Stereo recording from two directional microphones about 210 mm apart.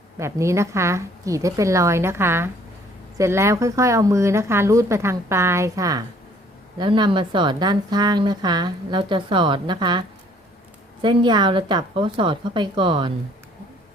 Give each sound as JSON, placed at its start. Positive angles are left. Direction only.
{"t": 0.2, "sound": "a woman's voice", "side_deg": -15}
{"t": 11.0, "sound": "a woman's voice", "side_deg": -20}